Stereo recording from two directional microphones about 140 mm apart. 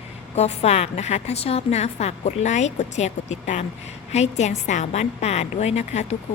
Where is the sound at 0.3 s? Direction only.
50° left (ahead or behind).